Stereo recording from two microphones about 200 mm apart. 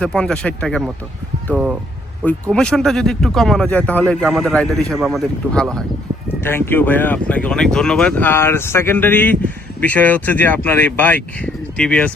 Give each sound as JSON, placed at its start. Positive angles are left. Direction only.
{"t": 0.0, "sound": "a man's voice", "side_deg": 5}
{"t": 2.2, "sound": "a man's voice", "side_deg": 5}